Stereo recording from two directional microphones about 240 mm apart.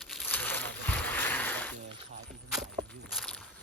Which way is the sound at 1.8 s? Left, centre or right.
Right.